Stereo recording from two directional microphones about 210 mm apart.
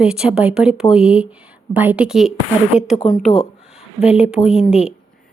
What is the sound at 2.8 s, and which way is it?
Speech, 35° left (ahead or behind).